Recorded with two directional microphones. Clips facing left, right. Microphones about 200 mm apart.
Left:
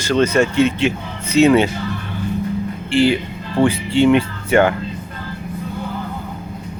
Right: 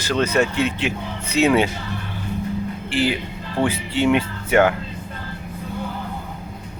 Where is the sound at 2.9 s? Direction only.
10° right (ahead or behind).